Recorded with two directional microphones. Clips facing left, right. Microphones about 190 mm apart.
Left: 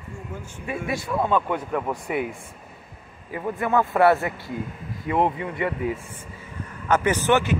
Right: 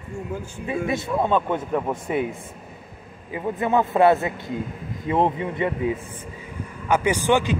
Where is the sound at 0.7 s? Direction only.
20° right (ahead or behind).